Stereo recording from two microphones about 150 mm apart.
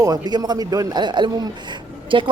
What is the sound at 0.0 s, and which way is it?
A man's voice, 25° right (ahead or behind).